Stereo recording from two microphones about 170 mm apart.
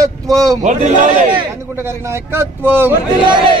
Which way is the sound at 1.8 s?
15° right (ahead or behind).